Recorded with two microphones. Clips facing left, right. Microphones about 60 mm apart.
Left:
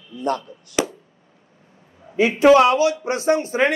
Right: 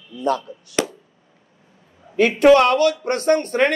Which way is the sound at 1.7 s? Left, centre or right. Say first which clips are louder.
Left 2 dB; left.